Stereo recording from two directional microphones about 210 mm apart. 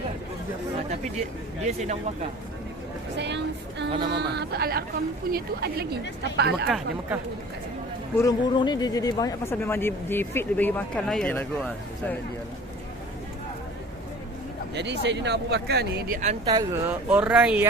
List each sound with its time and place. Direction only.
1.6 s speech: 30° right (ahead or behind)
3.2 s a sound: 55° right (ahead or behind)
4.1 s speech: 50° right (ahead or behind)
8.1 s speech: 15° left (ahead or behind)
14.8 s speech: 55° right (ahead or behind); by 16.4 s 35° right (ahead or behind)
16.5 s speech: 20° right (ahead or behind)
17.1 s speech: 5° right (ahead or behind)